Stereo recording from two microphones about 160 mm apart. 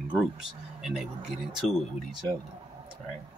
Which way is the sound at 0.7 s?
5° right (ahead or behind).